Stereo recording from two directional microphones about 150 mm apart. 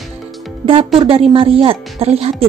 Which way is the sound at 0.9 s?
40° right (ahead or behind).